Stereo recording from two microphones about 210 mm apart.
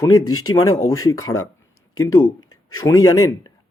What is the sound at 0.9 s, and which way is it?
Speech, 15° left (ahead or behind).